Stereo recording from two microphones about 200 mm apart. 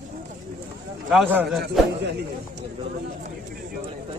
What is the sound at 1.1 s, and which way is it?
Speech, centre (ahead or behind).